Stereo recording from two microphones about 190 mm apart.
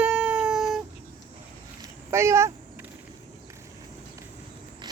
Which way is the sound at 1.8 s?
15° right (ahead or behind).